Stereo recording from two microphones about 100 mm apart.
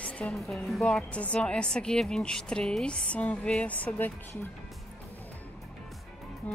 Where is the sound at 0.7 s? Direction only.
5° left (ahead or behind).